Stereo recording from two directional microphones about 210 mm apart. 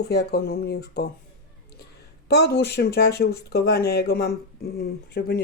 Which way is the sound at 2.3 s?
50° left (ahead or behind).